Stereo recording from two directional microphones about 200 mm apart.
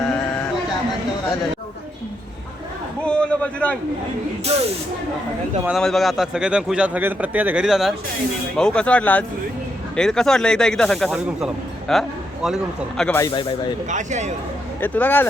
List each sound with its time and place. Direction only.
3.0 s a man's voice: 5° left (ahead or behind)
4.5 s speech: 30° right (ahead or behind)
5.6 s speech: centre (ahead or behind)
13.0 s speech: 10° left (ahead or behind)
13.9 s speech: 35° right (ahead or behind)
14.8 s speech: 10° left (ahead or behind)